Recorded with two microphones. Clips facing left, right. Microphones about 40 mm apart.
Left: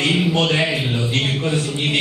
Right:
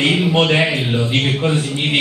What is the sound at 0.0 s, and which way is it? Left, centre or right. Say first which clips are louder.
Speech: right 3 dB; right.